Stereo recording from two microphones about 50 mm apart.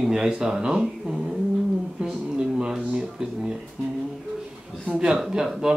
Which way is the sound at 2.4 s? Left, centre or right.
Centre.